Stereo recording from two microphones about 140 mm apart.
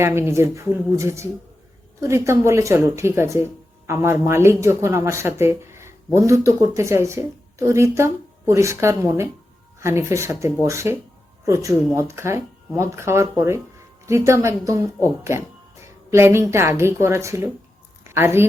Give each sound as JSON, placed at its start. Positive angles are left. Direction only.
{"t": 0.0, "sound": "a woman's voice", "side_deg": -20}